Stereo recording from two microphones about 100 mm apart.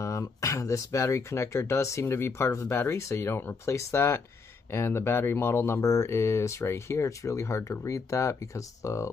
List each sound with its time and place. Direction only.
0.0 s speech: 30° left (ahead or behind)